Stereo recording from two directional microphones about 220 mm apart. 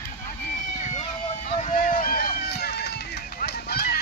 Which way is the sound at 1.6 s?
30° left (ahead or behind).